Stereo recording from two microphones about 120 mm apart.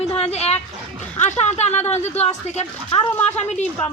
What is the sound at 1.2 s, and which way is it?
Speech, 70° left (ahead or behind).